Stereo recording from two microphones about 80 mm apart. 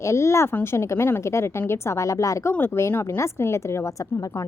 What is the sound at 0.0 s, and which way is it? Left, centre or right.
A woman's voice, left.